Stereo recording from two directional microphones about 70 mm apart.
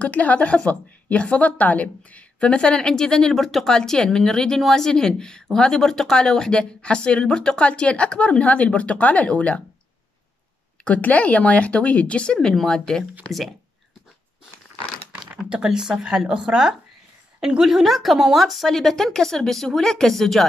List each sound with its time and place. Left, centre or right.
0.0 s a woman's voice: left
10.8 s a woman's voice: centre
15.2 s speech: centre